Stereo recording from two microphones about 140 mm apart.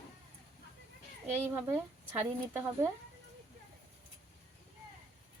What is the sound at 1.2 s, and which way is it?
Speech, 15° right (ahead or behind).